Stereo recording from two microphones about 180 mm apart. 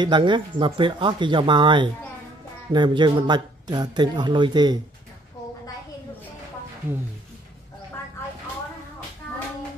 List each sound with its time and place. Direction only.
0.0 s speech: 25° right (ahead or behind)